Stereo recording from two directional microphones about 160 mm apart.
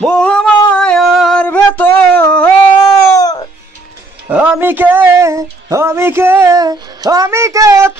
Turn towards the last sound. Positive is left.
turn(degrees=-20)  # may be behind; listen again after turning